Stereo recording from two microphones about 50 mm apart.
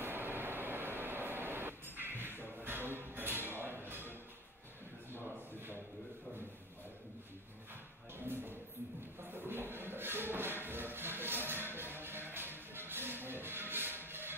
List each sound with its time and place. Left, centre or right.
0.0 s vehicle: right
2.4 s music: right
8.2 s a sound: right
9.2 s music: right